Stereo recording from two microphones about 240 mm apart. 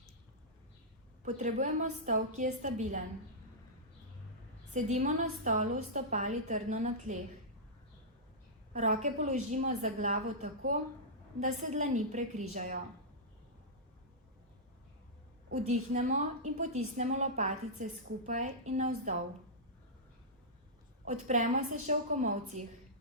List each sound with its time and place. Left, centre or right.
1.2 s a woman's voice: right
4.7 s a woman's voice: right
8.7 s a woman's voice: right
15.5 s a woman's voice: right
21.0 s a woman's voice: right